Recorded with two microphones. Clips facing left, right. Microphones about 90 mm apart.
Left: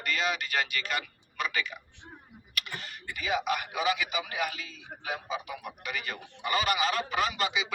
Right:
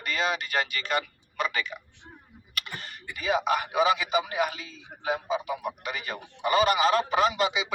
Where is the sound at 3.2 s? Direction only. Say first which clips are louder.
Right 4 dB; 35° right (ahead or behind).